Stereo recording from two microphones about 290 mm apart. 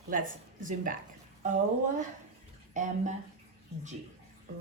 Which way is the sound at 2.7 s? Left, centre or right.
Right.